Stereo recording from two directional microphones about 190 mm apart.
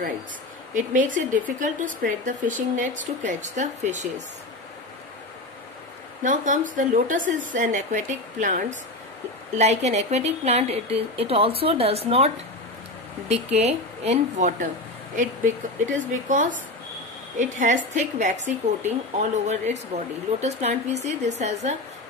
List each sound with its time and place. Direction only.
0.7 s speech: 45° right (ahead or behind)
6.2 s speech: 45° right (ahead or behind)
13.3 s speech: 35° right (ahead or behind)